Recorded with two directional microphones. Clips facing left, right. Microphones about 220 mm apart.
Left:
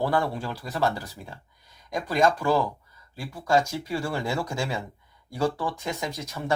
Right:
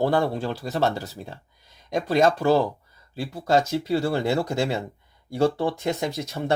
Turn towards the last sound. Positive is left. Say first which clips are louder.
# right 5 dB
turn(degrees=-30)  # may be behind; listen again after turning